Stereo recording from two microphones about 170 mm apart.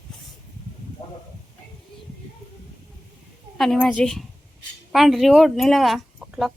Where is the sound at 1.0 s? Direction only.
30° left (ahead or behind).